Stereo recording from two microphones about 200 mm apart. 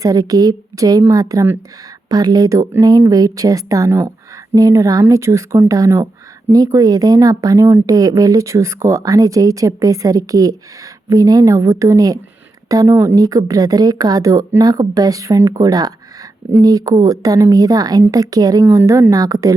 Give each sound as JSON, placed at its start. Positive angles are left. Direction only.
{"t": 0.0, "sound": "speech", "side_deg": -20}